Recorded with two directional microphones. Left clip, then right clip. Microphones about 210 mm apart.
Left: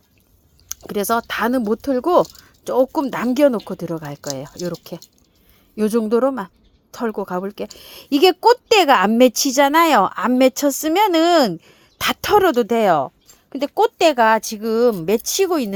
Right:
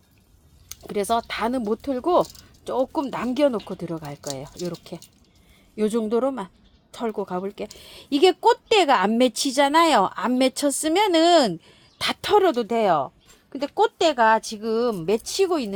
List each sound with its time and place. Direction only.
0.7 s a woman's voice: 35° left (ahead or behind)